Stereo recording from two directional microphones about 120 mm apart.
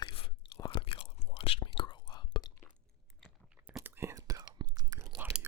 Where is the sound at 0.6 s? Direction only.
45° left (ahead or behind).